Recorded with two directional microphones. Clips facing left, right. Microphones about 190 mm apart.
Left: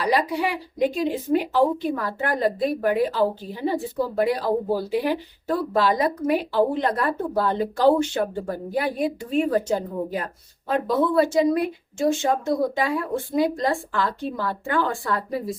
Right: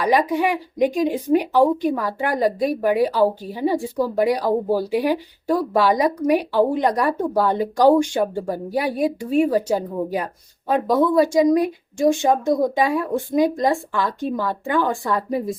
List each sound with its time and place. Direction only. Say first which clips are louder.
0.1 s a woman's voice: right 5 dB; 15° right (ahead or behind)